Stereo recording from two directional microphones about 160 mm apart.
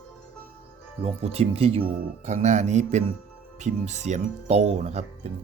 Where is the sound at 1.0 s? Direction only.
40° right (ahead or behind).